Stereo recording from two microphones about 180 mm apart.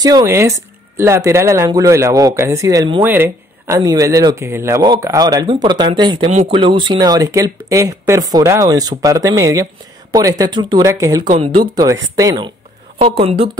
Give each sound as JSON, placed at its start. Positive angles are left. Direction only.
{"t": 0.0, "sound": "speech", "side_deg": -20}
{"t": 13.0, "sound": "speech", "side_deg": -35}